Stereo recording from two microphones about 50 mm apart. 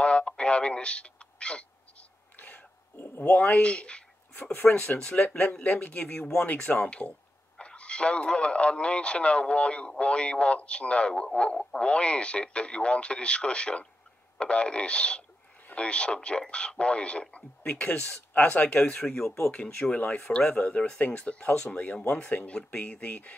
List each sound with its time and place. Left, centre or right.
0.0 s a sound: left
2.3 s a sound: left
2.9 s a man's voice: left
7.5 s a man's voice: left
17.6 s speech: left
18.9 s speech: centre
19.5 s a man's voice: left